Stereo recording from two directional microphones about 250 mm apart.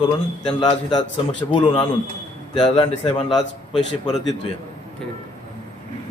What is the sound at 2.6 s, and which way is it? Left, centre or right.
Speech, centre.